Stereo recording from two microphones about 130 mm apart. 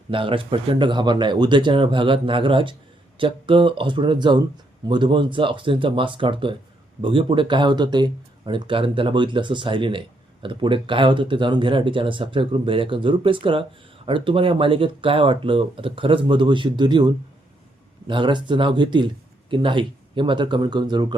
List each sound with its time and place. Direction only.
0.1 s speech: 40° right (ahead or behind)
18.1 s speech: 40° right (ahead or behind)